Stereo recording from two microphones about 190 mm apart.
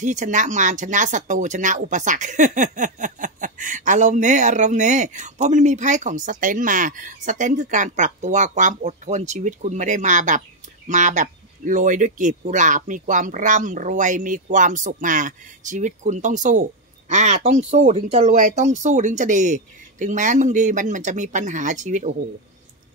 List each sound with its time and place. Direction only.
0.0 s speech: 40° right (ahead or behind)